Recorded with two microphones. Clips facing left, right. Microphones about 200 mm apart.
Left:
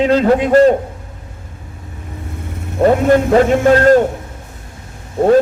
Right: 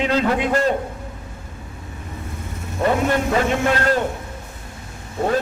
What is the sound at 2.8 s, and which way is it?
A man's voice, 40° left (ahead or behind).